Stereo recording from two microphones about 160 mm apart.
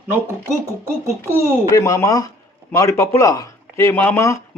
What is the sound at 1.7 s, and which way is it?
Speech, 20° left (ahead or behind).